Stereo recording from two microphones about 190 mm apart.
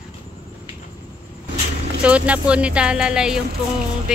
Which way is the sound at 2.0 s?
5° right (ahead or behind).